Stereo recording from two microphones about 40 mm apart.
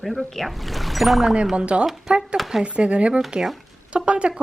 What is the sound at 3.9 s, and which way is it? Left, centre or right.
Speech, right.